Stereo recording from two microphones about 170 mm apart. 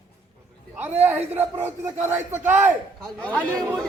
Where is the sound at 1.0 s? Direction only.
10° right (ahead or behind).